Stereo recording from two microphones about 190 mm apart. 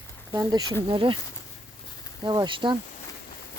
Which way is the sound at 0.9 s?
25° right (ahead or behind).